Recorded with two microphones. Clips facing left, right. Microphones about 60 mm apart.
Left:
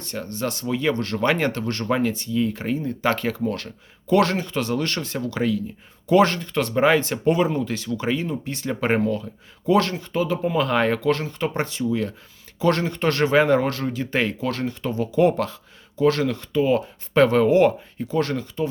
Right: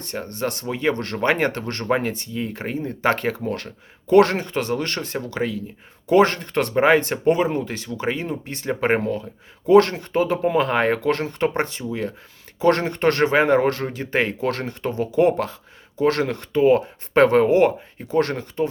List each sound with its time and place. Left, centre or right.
0.0 s speech: right
6.4 s speech: right
6.7 s speech: right
10.7 s speech: right
16.0 s speech: right
18.1 s speech: right